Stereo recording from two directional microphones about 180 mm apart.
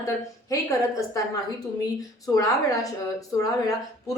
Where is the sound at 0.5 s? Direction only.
20° left (ahead or behind).